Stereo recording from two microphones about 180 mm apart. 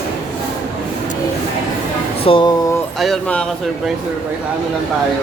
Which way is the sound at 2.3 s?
25° left (ahead or behind).